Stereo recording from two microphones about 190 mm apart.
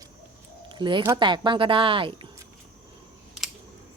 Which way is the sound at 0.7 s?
25° right (ahead or behind).